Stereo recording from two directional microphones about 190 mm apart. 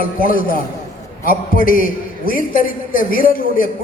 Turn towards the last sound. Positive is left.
turn(degrees=45)  # may be behind; listen again after turning